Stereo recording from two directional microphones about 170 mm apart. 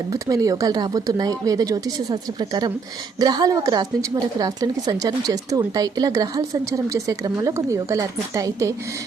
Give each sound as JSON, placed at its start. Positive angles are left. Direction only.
{"t": 0.1, "sound": "a woman's voice", "side_deg": -20}